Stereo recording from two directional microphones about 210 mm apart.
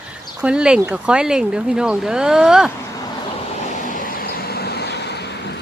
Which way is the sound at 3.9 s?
45° left (ahead or behind).